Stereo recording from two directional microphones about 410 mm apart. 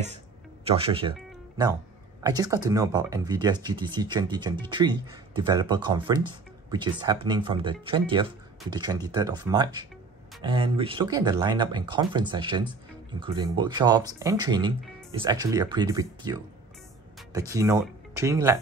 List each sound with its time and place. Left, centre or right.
0.7 s speech: centre
2.2 s speech: centre